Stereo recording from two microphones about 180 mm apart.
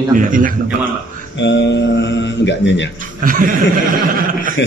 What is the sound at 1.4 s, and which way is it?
Speech, 80° left.